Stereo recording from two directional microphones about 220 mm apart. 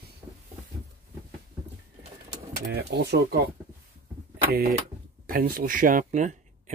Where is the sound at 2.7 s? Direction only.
50° right (ahead or behind).